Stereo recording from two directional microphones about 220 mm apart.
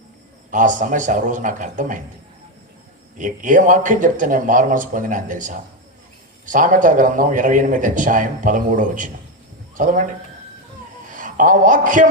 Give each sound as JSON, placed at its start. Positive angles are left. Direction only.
{"t": 0.5, "sound": "a man's voice", "side_deg": -35}
{"t": 3.2, "sound": "a man's voice", "side_deg": -35}